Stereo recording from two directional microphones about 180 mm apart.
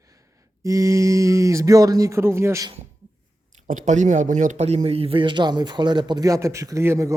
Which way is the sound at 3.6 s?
45° right (ahead or behind).